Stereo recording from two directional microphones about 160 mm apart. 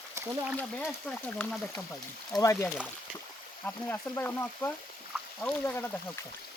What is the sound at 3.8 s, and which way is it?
Frying, 10° left (ahead or behind).